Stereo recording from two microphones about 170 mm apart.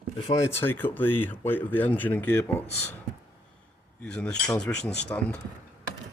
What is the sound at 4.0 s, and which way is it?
Speech, 5° left (ahead or behind).